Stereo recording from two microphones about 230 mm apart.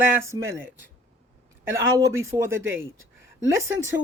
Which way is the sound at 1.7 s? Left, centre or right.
Centre.